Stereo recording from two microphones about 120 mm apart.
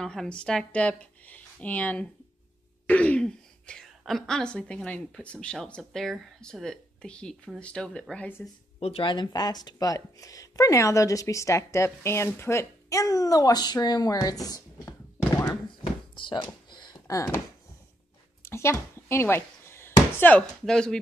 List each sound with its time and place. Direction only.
0.0 s speech: 5° left (ahead or behind)
8.7 s speech: 50° left (ahead or behind); by 15.5 s 30° left (ahead or behind)
16.2 s a sound: 40° left (ahead or behind)
18.4 s basketball bounce: 20° left (ahead or behind); by 21.0 s 5° left (ahead or behind)